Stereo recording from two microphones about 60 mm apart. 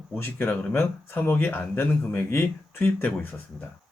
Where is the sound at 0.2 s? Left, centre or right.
Left.